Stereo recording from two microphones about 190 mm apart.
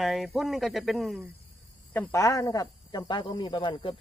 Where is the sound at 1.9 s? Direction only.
10° left (ahead or behind).